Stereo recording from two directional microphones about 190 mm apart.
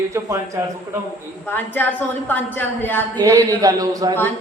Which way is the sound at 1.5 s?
10° left (ahead or behind).